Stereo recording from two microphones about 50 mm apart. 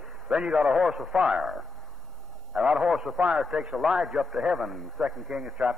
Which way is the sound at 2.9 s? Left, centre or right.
Centre.